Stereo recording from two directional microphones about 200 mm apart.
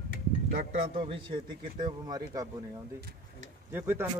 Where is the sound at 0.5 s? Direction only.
30° right (ahead or behind).